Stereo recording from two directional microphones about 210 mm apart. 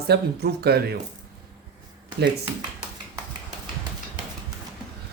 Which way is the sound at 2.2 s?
55° right (ahead or behind).